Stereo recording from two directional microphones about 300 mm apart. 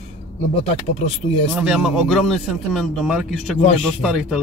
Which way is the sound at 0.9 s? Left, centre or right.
Left.